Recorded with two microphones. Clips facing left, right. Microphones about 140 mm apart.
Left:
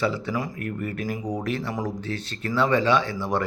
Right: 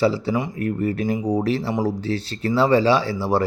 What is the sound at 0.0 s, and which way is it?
Speech, 30° right (ahead or behind).